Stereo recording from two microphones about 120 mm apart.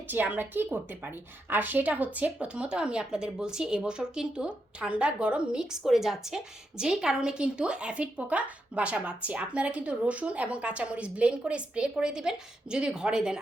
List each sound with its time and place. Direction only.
0.1 s a woman's voice: 15° right (ahead or behind)